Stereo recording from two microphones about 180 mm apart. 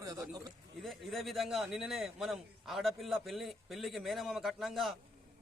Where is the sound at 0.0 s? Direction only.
20° right (ahead or behind).